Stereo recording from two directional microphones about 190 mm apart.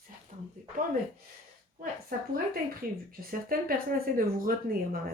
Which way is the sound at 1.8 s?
50° right (ahead or behind).